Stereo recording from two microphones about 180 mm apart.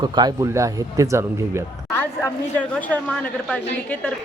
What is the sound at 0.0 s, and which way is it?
Speech, 20° right (ahead or behind).